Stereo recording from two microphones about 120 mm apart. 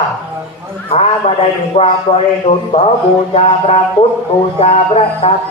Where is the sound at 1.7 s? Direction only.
55° left (ahead or behind).